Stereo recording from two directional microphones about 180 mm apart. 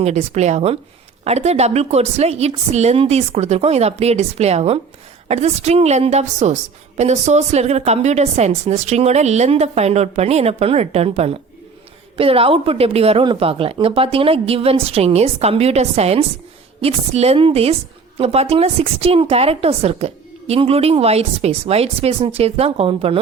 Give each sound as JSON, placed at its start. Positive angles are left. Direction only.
{"t": 0.0, "sound": "a woman's voice", "side_deg": -35}